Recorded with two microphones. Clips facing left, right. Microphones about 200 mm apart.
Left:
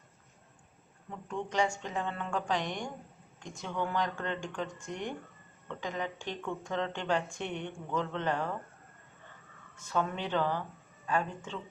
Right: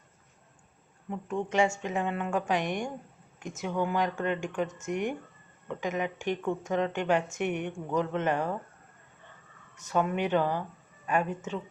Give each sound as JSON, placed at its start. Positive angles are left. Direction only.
{"t": 1.1, "sound": "speech", "side_deg": -20}
{"t": 9.9, "sound": "speech", "side_deg": -15}
{"t": 11.0, "sound": "a sound", "side_deg": -15}